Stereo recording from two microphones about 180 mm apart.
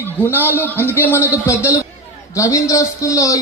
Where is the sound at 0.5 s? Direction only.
10° left (ahead or behind).